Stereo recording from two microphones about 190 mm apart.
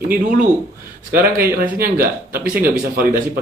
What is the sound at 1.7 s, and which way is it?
Speech, 50° right (ahead or behind).